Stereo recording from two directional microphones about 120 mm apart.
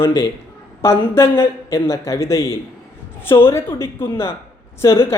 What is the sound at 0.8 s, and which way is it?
A man's voice, 20° left (ahead or behind).